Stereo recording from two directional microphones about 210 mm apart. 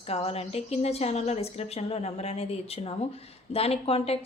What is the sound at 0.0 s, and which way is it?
Speech, 30° left (ahead or behind).